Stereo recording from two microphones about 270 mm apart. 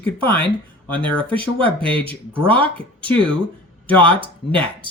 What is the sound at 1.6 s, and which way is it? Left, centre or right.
Speech, centre.